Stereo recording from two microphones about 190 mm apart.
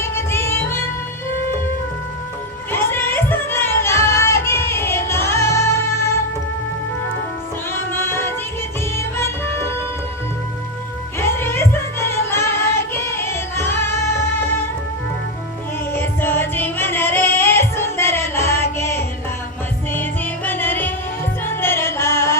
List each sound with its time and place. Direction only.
0.0 s music: 15° left (ahead or behind)
2.7 s music: 10° left (ahead or behind)
7.9 s music: 10° left (ahead or behind)
11.2 s music: 15° left (ahead or behind)
15.9 s music: 10° left (ahead or behind)